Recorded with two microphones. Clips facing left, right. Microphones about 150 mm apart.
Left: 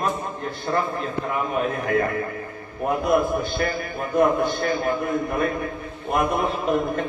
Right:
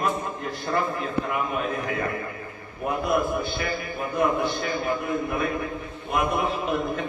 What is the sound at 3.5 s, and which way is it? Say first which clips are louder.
A man's voice: left 4 dB; 50° left (ahead or behind).